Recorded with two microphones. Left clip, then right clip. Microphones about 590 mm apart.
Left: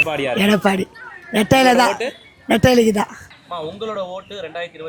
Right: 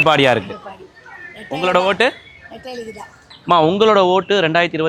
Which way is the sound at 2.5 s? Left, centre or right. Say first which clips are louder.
Left 17 dB; left.